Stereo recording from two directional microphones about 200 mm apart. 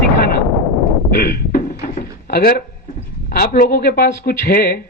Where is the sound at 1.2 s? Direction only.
50° left (ahead or behind).